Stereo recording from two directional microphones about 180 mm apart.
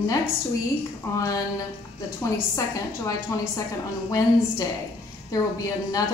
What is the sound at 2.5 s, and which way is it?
Speech, 15° left (ahead or behind).